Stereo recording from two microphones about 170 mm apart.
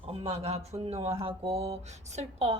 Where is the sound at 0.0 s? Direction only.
35° right (ahead or behind).